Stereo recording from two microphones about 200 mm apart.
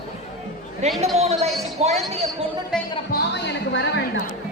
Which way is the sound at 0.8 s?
35° right (ahead or behind).